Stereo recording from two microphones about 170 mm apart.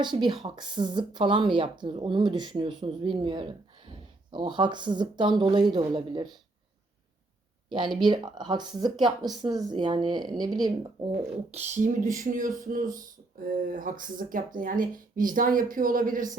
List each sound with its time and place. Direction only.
0.0 s speech: 25° right (ahead or behind)
7.7 s speech: 25° right (ahead or behind)
11.6 s speech: 45° right (ahead or behind)